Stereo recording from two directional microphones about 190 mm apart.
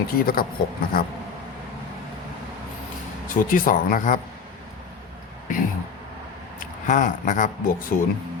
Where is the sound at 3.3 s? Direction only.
45° left (ahead or behind).